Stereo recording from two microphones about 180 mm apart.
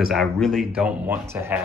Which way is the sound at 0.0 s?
Centre (ahead or behind).